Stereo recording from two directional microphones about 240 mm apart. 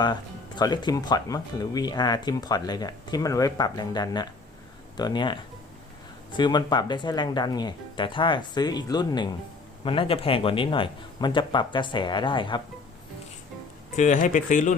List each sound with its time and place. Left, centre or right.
0.0 s a man's voice: centre
13.9 s speech: left